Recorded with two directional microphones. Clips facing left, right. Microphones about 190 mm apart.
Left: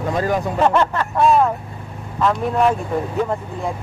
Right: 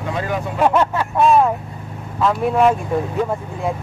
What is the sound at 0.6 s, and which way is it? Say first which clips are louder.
Speech: right 2 dB; 10° right (ahead or behind).